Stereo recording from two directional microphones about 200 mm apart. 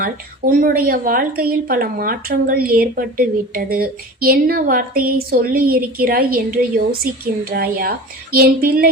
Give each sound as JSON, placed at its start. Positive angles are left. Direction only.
{"t": 0.0, "sound": "speech", "side_deg": -45}